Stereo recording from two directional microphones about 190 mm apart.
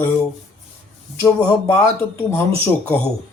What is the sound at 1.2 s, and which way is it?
Speech, 10° left (ahead or behind).